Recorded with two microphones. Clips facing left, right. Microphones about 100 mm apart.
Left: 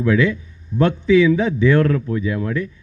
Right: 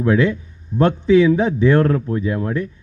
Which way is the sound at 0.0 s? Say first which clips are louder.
Right 1 dB; 35° right (ahead or behind).